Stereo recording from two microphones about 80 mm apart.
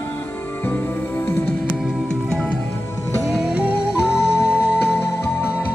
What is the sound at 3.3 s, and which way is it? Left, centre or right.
Music, centre.